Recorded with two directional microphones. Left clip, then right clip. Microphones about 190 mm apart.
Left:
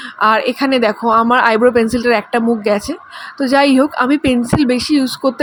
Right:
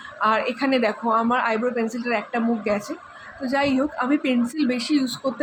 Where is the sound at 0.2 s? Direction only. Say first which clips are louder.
Left 8 dB; 35° left (ahead or behind).